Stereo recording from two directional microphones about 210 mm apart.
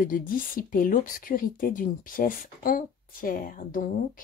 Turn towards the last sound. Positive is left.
turn(degrees=40)  # may be behind; listen again after turning